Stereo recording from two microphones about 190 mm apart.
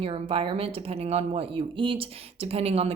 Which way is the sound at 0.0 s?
30° right (ahead or behind).